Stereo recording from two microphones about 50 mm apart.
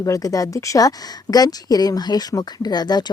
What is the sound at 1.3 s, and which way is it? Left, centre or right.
Speech, left.